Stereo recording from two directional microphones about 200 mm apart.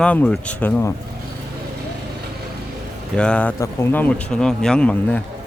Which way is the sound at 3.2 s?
5° left (ahead or behind).